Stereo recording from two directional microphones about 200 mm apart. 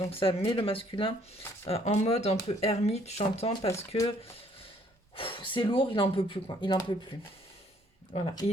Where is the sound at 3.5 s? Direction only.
15° left (ahead or behind).